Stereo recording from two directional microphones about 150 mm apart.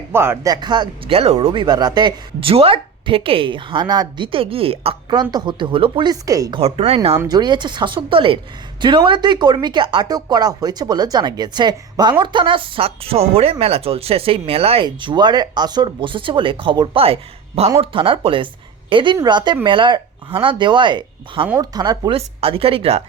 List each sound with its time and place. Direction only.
0.1 s a man's voice: 15° right (ahead or behind)
0.5 s speech: 30° right (ahead or behind)
5.0 s speech: 30° right (ahead or behind)
6.6 s speech: 40° right (ahead or behind)
7.2 s speech: 25° right (ahead or behind)
14.8 s speech: 30° right (ahead or behind)
22.1 s speech: 40° right (ahead or behind)